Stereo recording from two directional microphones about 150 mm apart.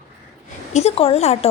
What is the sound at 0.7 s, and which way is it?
Speech, 45° left (ahead or behind).